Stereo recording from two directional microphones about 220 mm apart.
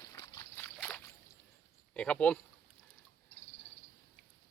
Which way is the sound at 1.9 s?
5° left (ahead or behind).